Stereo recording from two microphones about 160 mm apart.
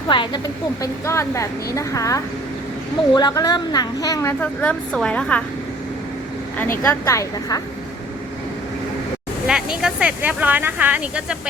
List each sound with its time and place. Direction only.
0.1 s a woman's voice: 30° left (ahead or behind); by 5.4 s 5° left (ahead or behind)
6.8 s a woman's voice: 20° left (ahead or behind)
9.5 s a sound: 5° right (ahead or behind)
9.8 s speech: 5° right (ahead or behind)